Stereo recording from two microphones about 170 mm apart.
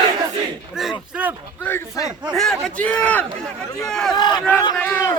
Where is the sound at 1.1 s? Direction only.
10° right (ahead or behind).